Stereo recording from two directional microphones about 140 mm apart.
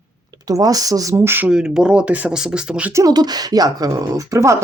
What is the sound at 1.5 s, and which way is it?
Speech, 5° right (ahead or behind).